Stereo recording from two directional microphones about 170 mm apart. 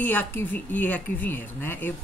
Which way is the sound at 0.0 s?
10° left (ahead or behind).